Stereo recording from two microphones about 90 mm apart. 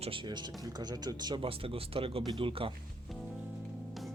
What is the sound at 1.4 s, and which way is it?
Speech, 90° right.